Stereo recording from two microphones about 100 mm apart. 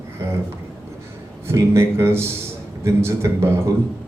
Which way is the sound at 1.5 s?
25° right (ahead or behind).